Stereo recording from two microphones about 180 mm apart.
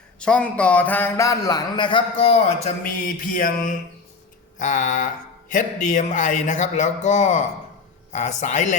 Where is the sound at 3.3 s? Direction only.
50° left (ahead or behind).